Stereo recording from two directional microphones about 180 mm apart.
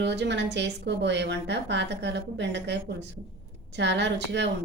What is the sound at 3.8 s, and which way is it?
Speech, 75° right (ahead or behind).